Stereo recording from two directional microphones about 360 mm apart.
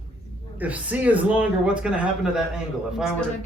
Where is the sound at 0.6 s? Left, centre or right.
Centre.